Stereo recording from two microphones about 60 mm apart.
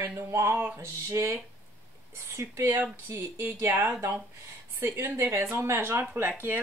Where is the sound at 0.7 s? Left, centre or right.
Right.